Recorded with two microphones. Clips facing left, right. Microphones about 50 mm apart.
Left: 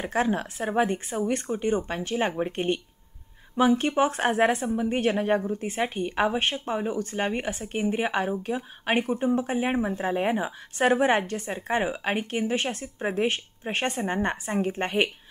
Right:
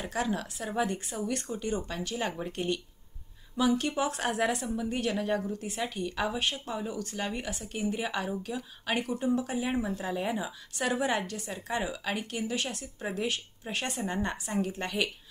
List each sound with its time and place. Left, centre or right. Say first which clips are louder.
0.0 s speech: left 6 dB; left